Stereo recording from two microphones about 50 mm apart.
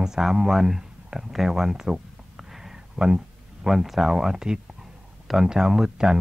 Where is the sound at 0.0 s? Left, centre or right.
Centre.